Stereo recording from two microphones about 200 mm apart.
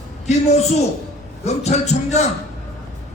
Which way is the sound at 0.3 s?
35° left (ahead or behind).